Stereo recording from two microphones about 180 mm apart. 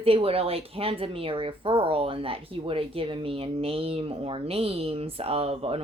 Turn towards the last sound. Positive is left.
turn(degrees=-35)  # may be behind; listen again after turning